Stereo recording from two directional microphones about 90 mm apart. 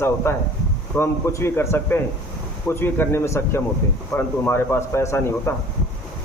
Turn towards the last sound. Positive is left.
turn(degrees=30)  # may be behind; listen again after turning